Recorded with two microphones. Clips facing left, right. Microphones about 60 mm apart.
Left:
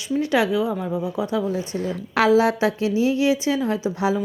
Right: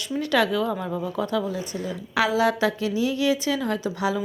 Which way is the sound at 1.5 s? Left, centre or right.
Left.